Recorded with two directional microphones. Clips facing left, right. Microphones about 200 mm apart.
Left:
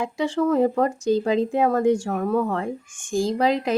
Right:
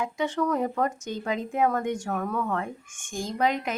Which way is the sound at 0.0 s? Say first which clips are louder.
Left 5 dB; 30° left (ahead or behind).